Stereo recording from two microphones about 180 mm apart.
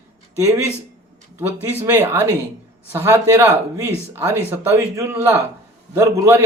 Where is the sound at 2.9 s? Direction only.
15° right (ahead or behind).